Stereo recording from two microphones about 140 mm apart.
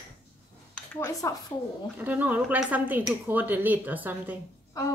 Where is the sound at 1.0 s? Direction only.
25° left (ahead or behind).